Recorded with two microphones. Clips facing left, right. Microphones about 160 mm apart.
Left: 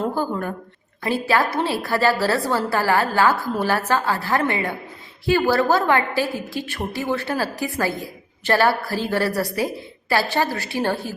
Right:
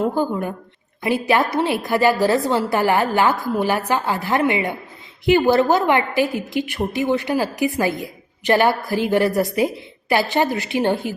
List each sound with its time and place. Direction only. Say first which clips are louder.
0.1 s a woman's voice: right 3 dB; 15° right (ahead or behind)